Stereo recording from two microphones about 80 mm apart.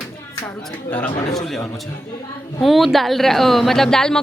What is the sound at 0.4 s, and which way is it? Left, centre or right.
Speech, left.